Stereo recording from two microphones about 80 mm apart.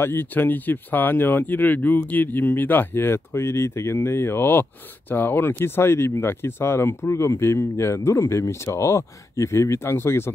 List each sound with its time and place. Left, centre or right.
0.0 s speech: left